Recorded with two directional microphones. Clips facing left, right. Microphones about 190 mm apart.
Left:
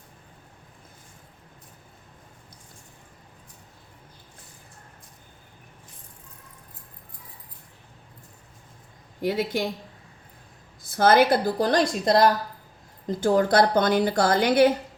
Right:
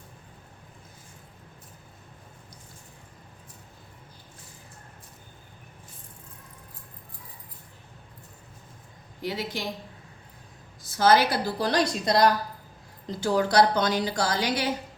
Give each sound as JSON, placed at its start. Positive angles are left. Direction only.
{"t": 9.2, "sound": "a woman's voice", "side_deg": 50}
{"t": 10.8, "sound": "a woman's voice", "side_deg": 55}